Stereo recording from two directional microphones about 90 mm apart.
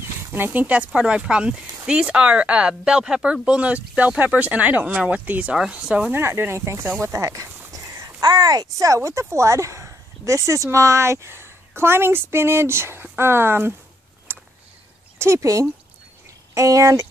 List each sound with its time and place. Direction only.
0.3 s speech: 20° right (ahead or behind)
6.1 s speech: 25° right (ahead or behind)
14.3 s a sound: 25° right (ahead or behind)
15.1 s speech: 30° right (ahead or behind)